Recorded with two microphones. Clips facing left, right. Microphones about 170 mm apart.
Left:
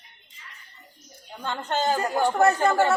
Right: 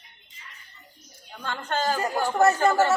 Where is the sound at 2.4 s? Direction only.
5° right (ahead or behind).